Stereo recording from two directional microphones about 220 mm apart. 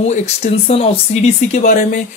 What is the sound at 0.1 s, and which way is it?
Speech, 30° left (ahead or behind).